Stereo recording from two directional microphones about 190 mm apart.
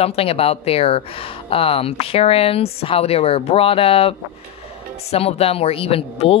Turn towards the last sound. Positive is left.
turn(degrees=30)  # may be behind; listen again after turning